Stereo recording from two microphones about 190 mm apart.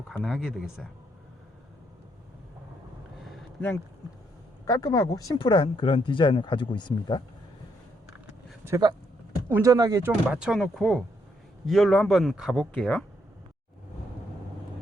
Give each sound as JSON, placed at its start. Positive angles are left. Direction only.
{"t": 0.1, "sound": "speech", "side_deg": 0}
{"t": 3.2, "sound": "a sound", "side_deg": 5}
{"t": 4.6, "sound": "speech", "side_deg": 20}
{"t": 8.6, "sound": "speech", "side_deg": -20}
{"t": 10.2, "sound": "speech", "side_deg": -5}